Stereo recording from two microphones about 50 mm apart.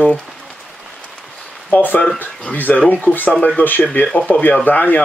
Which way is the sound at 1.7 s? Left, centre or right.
Left.